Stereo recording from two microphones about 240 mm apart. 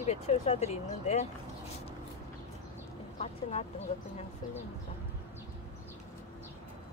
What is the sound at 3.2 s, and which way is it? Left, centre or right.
Speech, left.